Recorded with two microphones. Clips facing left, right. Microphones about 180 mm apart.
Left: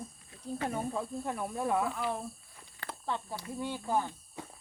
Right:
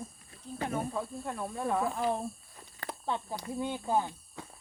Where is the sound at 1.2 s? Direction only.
15° left (ahead or behind).